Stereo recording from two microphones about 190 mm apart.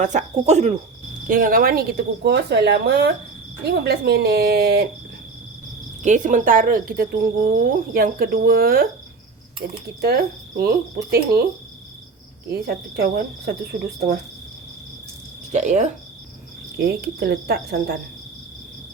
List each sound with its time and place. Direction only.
0.0 s cricket: 40° right (ahead or behind)
1.3 s cricket: 45° right (ahead or behind)
6.0 s a woman's voice: 40° right (ahead or behind)
9.6 s cricket: 55° right (ahead or behind)
12.5 s a woman's voice: 55° right (ahead or behind)
15.5 s cricket: 40° right (ahead or behind)
16.7 s cricket: 55° right (ahead or behind)